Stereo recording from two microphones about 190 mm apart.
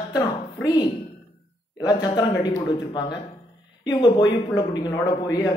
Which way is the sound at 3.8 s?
20° left (ahead or behind).